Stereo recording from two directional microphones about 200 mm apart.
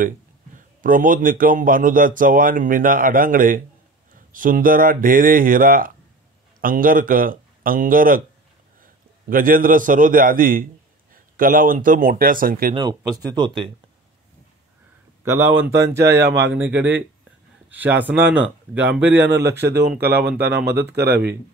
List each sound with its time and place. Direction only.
0.6 s a man's voice: 40° right (ahead or behind)
12.7 s speech: 20° right (ahead or behind)
15.2 s speech: 15° right (ahead or behind)
16.3 s speech: 60° right (ahead or behind)
16.5 s speech: 10° right (ahead or behind)
19.2 s a man's voice: 60° right (ahead or behind)
19.9 s speech: 10° right (ahead or behind)
20.3 s speech: 55° right (ahead or behind)